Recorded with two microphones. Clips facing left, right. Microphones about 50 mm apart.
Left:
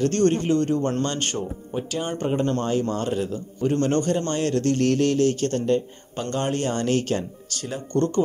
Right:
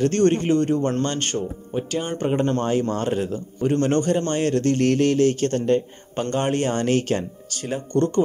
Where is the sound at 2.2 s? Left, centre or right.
Right.